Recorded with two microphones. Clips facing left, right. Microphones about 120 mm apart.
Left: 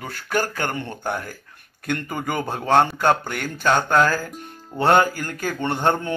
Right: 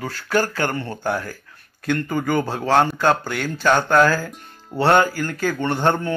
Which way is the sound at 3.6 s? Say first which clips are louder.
Right 2 dB; 20° left (ahead or behind).